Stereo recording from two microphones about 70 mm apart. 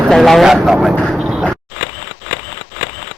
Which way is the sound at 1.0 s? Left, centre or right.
Centre.